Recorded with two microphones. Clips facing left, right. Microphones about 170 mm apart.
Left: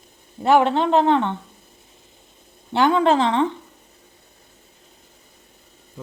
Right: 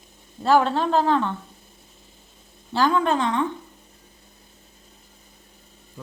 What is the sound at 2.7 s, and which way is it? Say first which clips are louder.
Speech: left 4 dB; 20° left (ahead or behind).